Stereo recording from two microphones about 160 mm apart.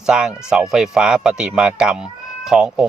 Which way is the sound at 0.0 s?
5° right (ahead or behind).